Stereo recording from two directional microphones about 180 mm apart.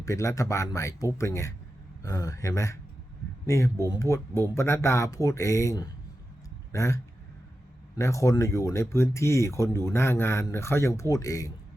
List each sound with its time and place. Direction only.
0.0 s speech: 15° left (ahead or behind)